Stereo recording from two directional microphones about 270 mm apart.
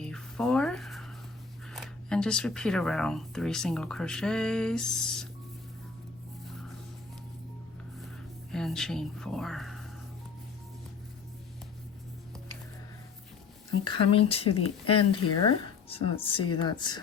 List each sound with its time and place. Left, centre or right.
0.0 s music: centre
1.7 s speech: centre
8.5 s speech: centre
13.8 s speech: centre